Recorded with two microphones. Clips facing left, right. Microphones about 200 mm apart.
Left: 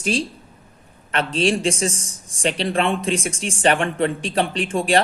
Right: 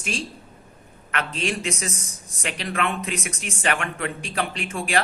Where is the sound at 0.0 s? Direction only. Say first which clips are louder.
Left 8 dB; 35° left (ahead or behind).